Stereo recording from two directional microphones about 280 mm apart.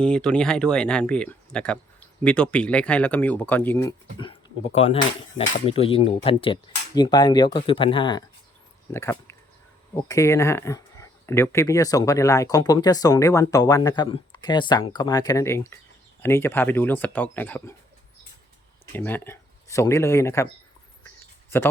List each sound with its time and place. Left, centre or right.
0.0 s speech: centre
18.9 s speech: centre